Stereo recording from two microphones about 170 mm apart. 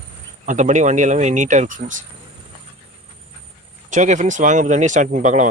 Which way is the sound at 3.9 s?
45° right (ahead or behind).